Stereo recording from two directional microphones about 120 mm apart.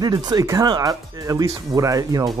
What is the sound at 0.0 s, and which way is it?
Speech, 35° right (ahead or behind).